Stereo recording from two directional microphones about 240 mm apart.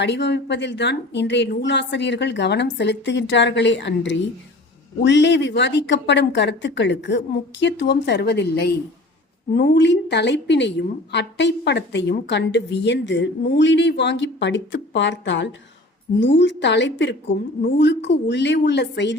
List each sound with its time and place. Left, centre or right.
0.0 s a woman's voice: left